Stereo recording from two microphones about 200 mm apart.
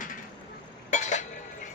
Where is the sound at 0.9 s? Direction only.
35° left (ahead or behind).